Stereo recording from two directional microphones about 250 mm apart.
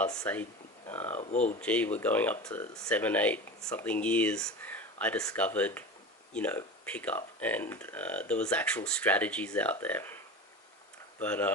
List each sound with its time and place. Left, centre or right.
0.0 s speech: centre
1.1 s speech: left
1.6 s speech: centre
11.2 s speech: centre